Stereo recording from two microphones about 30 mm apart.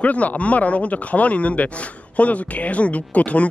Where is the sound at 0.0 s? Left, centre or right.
Left.